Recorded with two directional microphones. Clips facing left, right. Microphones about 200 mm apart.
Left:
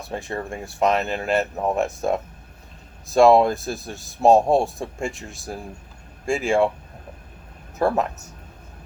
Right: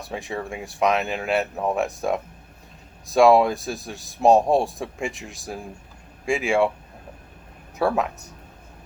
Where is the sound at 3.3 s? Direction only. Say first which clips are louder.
Left 1 dB; 15° right (ahead or behind).